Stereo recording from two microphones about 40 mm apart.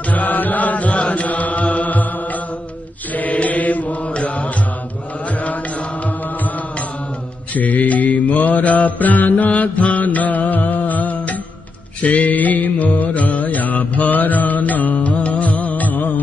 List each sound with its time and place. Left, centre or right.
0.1 s mantra: left
4.1 s music: left
5.4 s mantra: left
7.5 s mantra: left
12.0 s music: left